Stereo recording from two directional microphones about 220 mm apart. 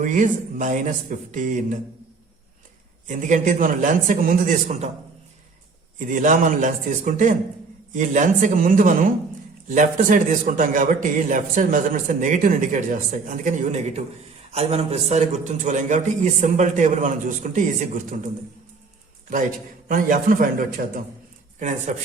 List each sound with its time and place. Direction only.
0.0 s a man's voice: 35° right (ahead or behind)
3.1 s a man's voice: 35° right (ahead or behind)
6.0 s a man's voice: 35° right (ahead or behind)
19.3 s a man's voice: 35° right (ahead or behind)